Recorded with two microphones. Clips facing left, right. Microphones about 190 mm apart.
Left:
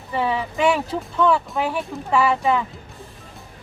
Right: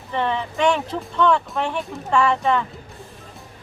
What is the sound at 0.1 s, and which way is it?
Speech, 5° left (ahead or behind).